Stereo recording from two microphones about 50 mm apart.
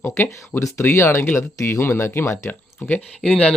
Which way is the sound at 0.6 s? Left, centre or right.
Left.